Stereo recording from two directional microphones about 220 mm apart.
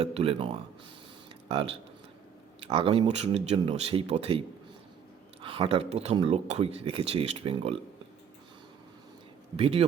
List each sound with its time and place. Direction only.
0.0 s speech: 30° right (ahead or behind)
9.6 s speech: 25° right (ahead or behind)